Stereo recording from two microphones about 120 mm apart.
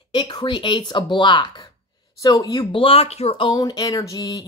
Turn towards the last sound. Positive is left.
turn(degrees=30)  # may be behind; listen again after turning